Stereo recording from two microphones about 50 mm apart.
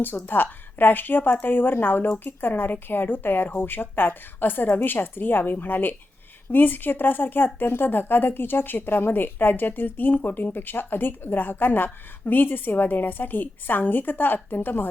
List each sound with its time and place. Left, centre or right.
0.3 s speech: left